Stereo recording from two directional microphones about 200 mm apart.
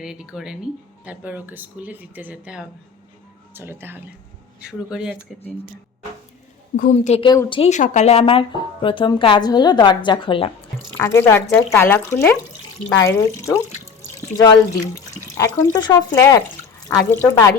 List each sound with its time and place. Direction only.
0.0 s speech: 5° right (ahead or behind)
6.7 s a woman's voice: 40° left (ahead or behind)
10.9 s speech: 10° left (ahead or behind)
15.1 s speech: 15° left (ahead or behind)